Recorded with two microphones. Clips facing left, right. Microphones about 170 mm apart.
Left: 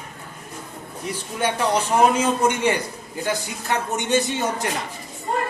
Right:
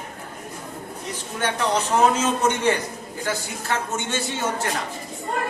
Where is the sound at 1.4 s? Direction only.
10° left (ahead or behind).